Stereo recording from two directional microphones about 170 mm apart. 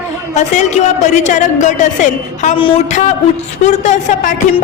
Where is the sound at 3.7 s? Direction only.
45° left (ahead or behind).